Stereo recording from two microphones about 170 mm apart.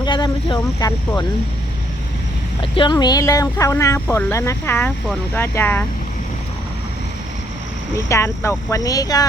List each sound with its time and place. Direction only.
0.0 s speech: 25° left (ahead or behind)
2.6 s speech: 30° left (ahead or behind); by 5.8 s 10° left (ahead or behind)
7.9 s speech: 15° left (ahead or behind)